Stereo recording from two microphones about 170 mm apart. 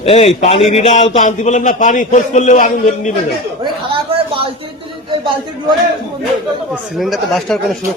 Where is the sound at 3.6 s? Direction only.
30° right (ahead or behind).